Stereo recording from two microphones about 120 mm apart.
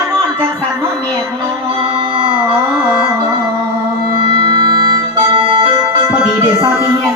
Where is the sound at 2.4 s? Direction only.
10° right (ahead or behind).